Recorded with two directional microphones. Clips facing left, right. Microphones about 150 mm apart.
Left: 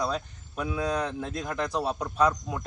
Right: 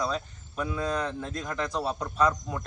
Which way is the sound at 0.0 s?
5° left (ahead or behind).